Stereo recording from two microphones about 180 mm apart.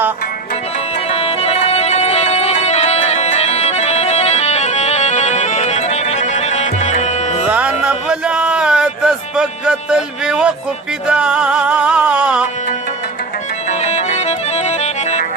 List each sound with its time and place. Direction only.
1.1 s music: 35° left (ahead or behind)
7.4 s music: 5° right (ahead or behind)
13.7 s music: 40° left (ahead or behind)